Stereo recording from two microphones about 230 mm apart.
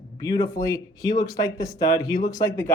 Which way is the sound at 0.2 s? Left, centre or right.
Centre.